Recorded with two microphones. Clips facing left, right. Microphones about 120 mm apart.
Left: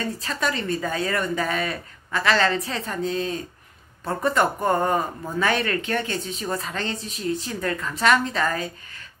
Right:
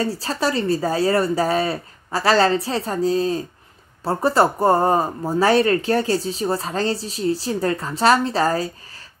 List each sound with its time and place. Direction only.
0.0 s speech: 30° right (ahead or behind)